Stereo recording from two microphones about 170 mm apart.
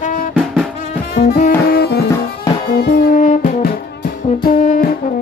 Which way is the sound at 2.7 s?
60° left (ahead or behind).